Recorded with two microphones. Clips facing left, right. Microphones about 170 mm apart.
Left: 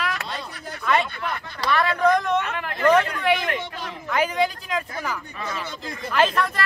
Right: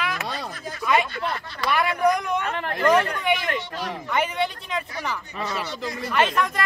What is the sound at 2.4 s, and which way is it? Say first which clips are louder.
Speech: even; 30° right (ahead or behind).